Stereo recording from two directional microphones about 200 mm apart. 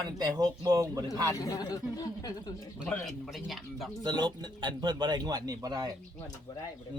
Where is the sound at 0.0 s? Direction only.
20° right (ahead or behind).